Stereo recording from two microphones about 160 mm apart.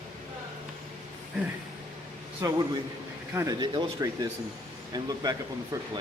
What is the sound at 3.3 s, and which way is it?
Speech, 25° right (ahead or behind).